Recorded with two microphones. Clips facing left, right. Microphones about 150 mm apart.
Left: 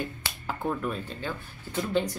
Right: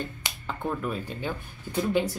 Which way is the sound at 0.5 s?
Centre (ahead or behind).